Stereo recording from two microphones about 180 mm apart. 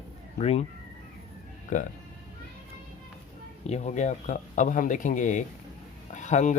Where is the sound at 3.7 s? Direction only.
40° left (ahead or behind).